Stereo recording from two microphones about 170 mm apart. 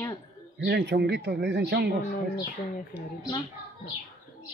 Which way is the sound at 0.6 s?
80° right.